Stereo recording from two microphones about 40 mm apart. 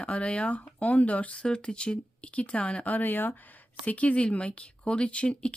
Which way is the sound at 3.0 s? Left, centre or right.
Left.